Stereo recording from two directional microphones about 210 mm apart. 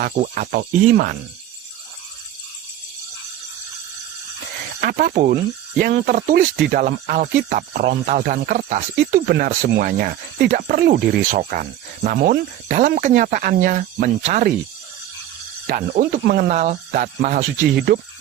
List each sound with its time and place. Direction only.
0.0 s speech: 40° right (ahead or behind)
4.8 s speech: 45° right (ahead or behind)
15.6 s speech: 40° right (ahead or behind)